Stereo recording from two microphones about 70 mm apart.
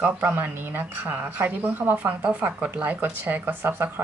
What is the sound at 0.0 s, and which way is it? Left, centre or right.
A woman's voice, right.